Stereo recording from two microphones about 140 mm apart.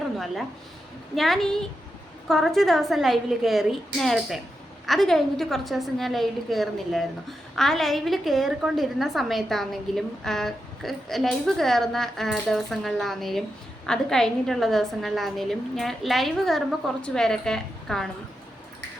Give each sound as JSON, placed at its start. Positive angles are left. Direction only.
{"t": 1.1, "sound": "a woman's voice", "side_deg": 0}